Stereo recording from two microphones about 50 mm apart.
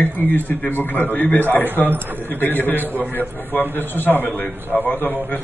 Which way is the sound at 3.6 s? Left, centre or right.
Right.